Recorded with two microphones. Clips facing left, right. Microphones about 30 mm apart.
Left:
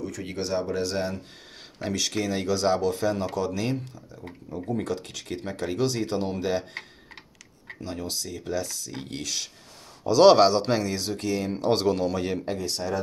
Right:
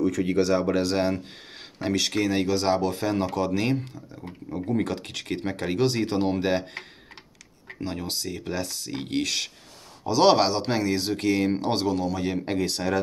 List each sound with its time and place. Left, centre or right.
0.4 s speech: right
0.7 s speech: right
1.8 s speech: right
7.8 s speech: right
10.0 s speech: centre
11.0 s speech: right
11.7 s a man's voice: centre
12.6 s speech: right